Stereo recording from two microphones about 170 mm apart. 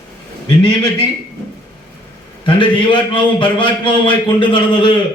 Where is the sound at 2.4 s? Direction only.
25° left (ahead or behind).